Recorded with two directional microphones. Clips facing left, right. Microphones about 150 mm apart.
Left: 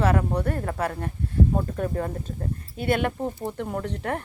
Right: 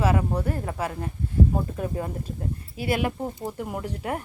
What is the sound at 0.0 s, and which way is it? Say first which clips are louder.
Speech: left 1 dB; 5° right (ahead or behind).